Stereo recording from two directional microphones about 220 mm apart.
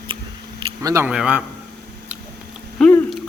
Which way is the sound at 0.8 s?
10° right (ahead or behind).